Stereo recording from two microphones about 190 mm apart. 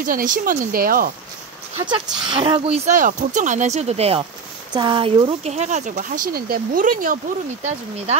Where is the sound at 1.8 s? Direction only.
25° right (ahead or behind).